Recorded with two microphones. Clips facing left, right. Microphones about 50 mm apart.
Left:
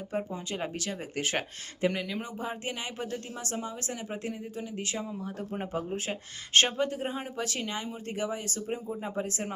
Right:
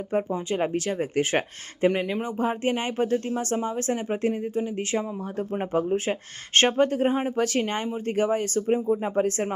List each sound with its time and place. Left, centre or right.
0.1 s speech: right